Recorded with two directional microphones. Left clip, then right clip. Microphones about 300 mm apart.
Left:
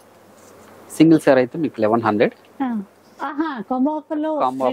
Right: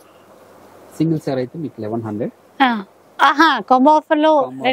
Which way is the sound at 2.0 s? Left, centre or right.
Centre.